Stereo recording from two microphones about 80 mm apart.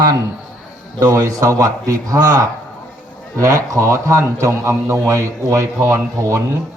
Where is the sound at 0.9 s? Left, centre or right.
Right.